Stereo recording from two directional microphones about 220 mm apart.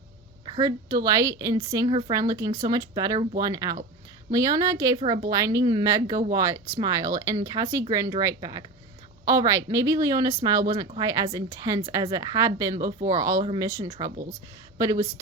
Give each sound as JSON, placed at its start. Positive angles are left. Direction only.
{"t": 0.4, "sound": "speech", "side_deg": -20}